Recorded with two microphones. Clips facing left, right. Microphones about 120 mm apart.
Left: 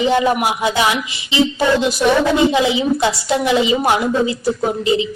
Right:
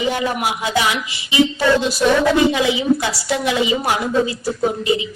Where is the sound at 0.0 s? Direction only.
25° left (ahead or behind).